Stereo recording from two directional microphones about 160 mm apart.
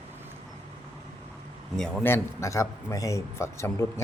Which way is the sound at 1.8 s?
10° left (ahead or behind).